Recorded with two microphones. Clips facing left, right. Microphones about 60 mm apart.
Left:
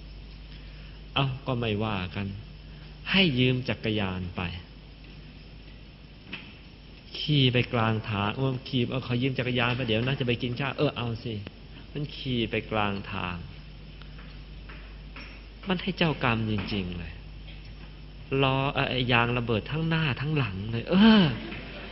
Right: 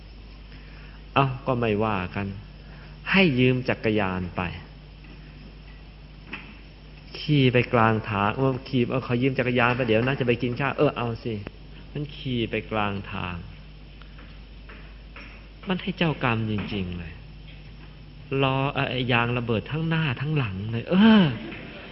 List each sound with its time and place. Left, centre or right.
1.1 s a man's voice: right
1.9 s speech: right
3.9 s a man's voice: right
6.3 s a sound: right
7.1 s a man's voice: right
9.0 s speech: right
11.9 s a man's voice: centre
14.7 s speech: centre
18.3 s a man's voice: centre